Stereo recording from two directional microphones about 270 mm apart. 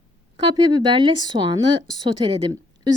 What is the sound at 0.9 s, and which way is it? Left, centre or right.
A woman's voice, centre.